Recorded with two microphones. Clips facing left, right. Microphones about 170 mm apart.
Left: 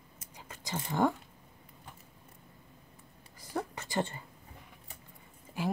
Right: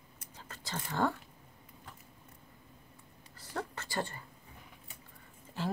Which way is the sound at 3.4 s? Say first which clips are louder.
Left 3 dB; 10° left (ahead or behind).